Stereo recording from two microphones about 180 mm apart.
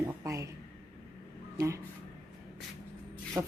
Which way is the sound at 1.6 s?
15° right (ahead or behind).